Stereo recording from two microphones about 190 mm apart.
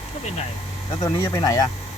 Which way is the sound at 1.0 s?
20° left (ahead or behind).